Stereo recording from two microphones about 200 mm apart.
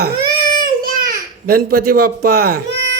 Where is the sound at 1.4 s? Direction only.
50° right (ahead or behind).